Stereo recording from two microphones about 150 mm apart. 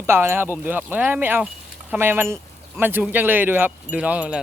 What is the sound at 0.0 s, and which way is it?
Speech, 15° right (ahead or behind).